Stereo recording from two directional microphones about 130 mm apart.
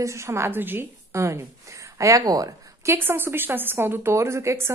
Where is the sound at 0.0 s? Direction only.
20° right (ahead or behind).